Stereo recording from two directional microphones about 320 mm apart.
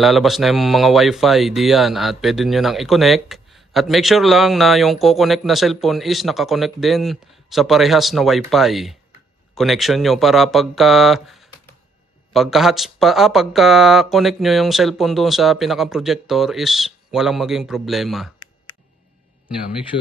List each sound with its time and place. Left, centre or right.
0.0 s speech: centre
19.9 s speech: left